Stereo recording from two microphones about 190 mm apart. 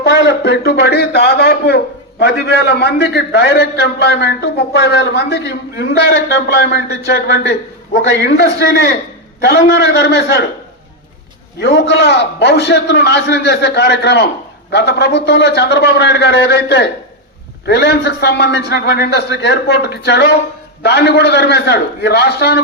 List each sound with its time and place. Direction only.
0.0 s a man's voice: 60° left (ahead or behind)
11.6 s a man's voice: 65° left (ahead or behind)